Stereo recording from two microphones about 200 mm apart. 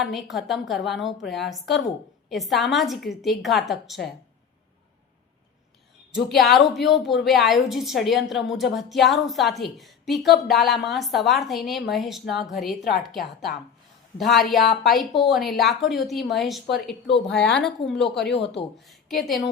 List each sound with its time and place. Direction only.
0.0 s a woman's voice: centre (ahead or behind)
6.1 s a woman's voice: centre (ahead or behind)
17.2 s a woman's voice: 60° left (ahead or behind)
17.6 s a woman's voice: centre (ahead or behind)